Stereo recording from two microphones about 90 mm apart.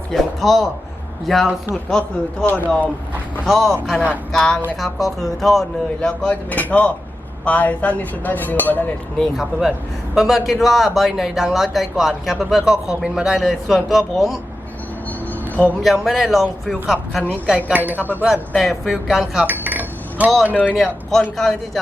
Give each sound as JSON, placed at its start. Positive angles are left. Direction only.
{"t": 0.1, "sound": "a man's voice", "side_deg": 0}
{"t": 2.5, "sound": "speech", "side_deg": 20}
{"t": 3.4, "sound": "a man's voice", "side_deg": 0}
{"t": 9.4, "sound": "a man's voice", "side_deg": -5}
{"t": 15.8, "sound": "a man's voice", "side_deg": 0}
{"t": 17.7, "sound": "speech", "side_deg": -20}
{"t": 18.3, "sound": "a man's voice", "side_deg": 0}
{"t": 19.5, "sound": "dishes", "side_deg": -20}
{"t": 20.5, "sound": "speech", "side_deg": 20}
{"t": 20.7, "sound": "a man's voice", "side_deg": 5}